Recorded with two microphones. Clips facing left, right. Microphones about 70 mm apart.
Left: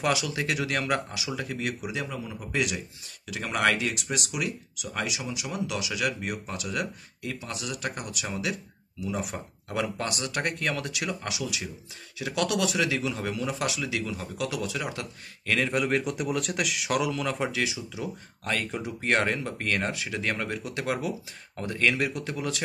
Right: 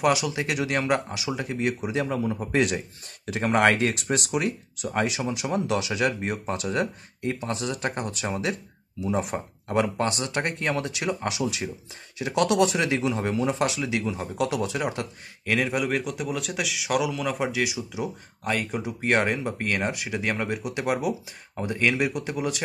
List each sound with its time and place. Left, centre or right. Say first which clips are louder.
0.0 s speech: right 4 dB; right
15.5 s a man's voice: right 1 dB; centre